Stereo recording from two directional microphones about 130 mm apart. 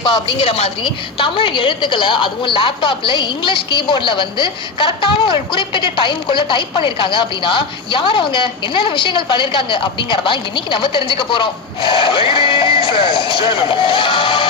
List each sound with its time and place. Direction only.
0.0 s a woman's voice: 40° left (ahead or behind)